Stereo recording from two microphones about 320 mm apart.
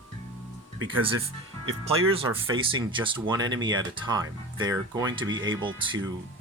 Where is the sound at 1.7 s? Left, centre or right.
Right.